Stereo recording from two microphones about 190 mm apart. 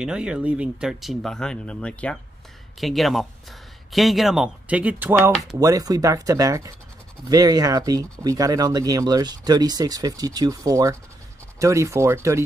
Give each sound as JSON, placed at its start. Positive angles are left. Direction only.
{"t": 0.0, "sound": "speech", "side_deg": -5}